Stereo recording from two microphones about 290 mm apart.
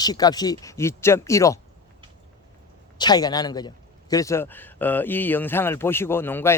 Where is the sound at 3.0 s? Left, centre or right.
Centre.